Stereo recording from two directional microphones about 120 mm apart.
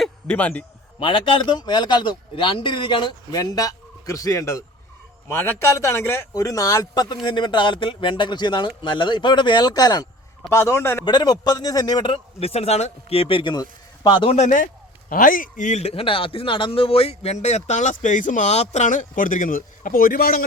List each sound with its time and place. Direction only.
0.0 s a sound: 10° left (ahead or behind)
0.9 s a man's voice: 45° left (ahead or behind)
3.3 s a man's voice: 30° left (ahead or behind)
11.0 s a man's voice: 40° left (ahead or behind)
14.3 s speech: 80° left